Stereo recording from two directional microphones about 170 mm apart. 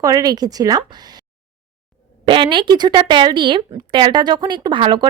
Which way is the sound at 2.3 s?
30° right (ahead or behind).